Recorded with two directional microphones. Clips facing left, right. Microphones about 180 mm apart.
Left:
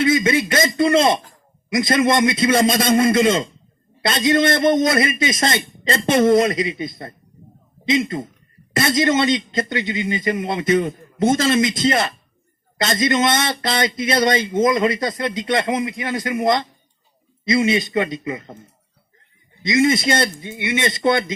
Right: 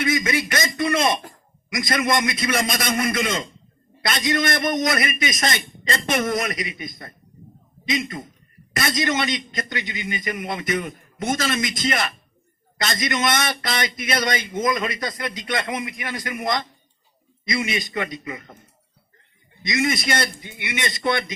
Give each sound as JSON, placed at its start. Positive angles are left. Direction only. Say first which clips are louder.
{"t": 0.0, "sound": "speech", "louder": "left 6 dB", "side_deg": 25}
{"t": 19.6, "sound": "speech", "louder": "left 6 dB", "side_deg": 25}